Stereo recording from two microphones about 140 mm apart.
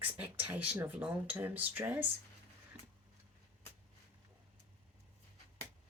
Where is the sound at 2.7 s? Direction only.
50° right (ahead or behind).